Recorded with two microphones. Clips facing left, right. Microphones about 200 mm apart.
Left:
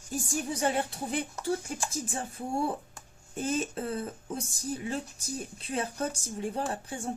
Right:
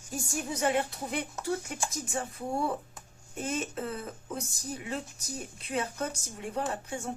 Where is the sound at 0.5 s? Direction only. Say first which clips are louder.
Right 2 dB; 30° left (ahead or behind).